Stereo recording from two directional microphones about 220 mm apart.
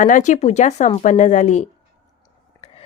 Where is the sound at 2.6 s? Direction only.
25° left (ahead or behind).